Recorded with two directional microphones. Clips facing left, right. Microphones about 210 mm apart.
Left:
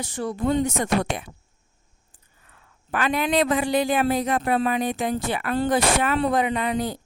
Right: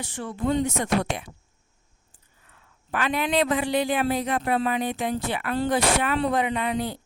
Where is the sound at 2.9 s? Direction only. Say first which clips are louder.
Left 2 dB; 45° left (ahead or behind).